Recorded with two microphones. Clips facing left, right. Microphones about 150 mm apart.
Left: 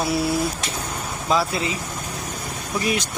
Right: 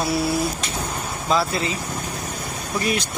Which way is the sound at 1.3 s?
10° left (ahead or behind).